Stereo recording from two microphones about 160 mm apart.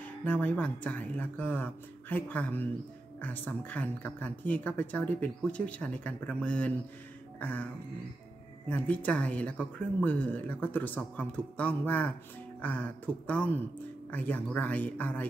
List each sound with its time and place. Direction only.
0.0 s speech: 10° left (ahead or behind)
7.3 s music: 10° left (ahead or behind)
8.6 s speech: 10° left (ahead or behind)